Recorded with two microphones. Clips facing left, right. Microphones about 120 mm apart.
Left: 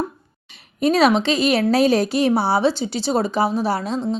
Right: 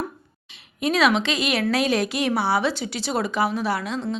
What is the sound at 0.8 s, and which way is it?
A woman's voice, 35° left (ahead or behind).